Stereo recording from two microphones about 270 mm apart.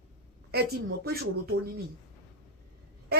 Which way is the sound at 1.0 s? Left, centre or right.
Right.